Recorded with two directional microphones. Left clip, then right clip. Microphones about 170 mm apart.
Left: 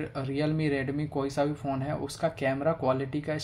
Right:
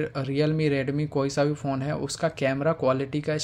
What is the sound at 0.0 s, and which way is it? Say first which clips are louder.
Speech: right 5 dB; 30° right (ahead or behind).